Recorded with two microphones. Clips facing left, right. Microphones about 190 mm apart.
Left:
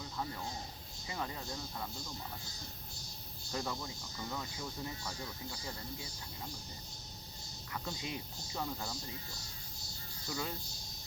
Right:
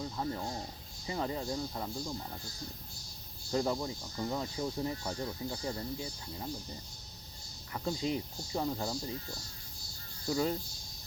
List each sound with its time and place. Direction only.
0.2 s speech: 30° right (ahead or behind)
3.5 s speech: 25° right (ahead or behind)
7.7 s speech: 30° right (ahead or behind)
10.2 s speech: 30° right (ahead or behind)